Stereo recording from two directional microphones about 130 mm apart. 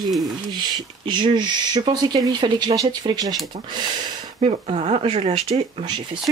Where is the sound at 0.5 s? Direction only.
35° right (ahead or behind).